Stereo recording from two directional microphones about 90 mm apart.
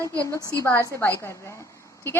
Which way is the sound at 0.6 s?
30° left (ahead or behind).